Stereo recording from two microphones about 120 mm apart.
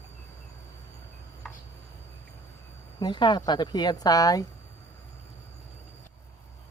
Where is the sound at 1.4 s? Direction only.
Centre (ahead or behind).